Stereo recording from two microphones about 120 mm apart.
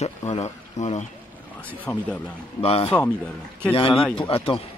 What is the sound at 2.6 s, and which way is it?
Speech, 55° left (ahead or behind).